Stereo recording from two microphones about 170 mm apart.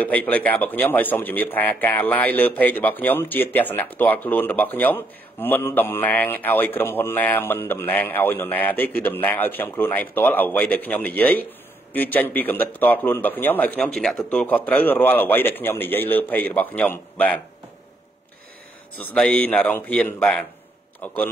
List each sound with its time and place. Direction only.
0.0 s a man's voice: 10° left (ahead or behind)
19.1 s a man's voice: 10° left (ahead or behind)